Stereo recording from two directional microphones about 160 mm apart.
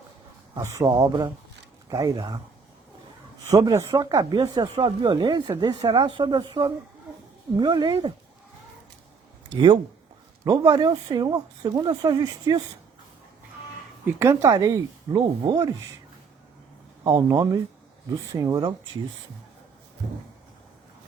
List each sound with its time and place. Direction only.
0.5 s speech: 20° right (ahead or behind)
3.5 s speech: 20° right (ahead or behind)
10.4 s speech: 25° right (ahead or behind)
14.1 s speech: 15° right (ahead or behind)
17.0 s speech: 20° right (ahead or behind)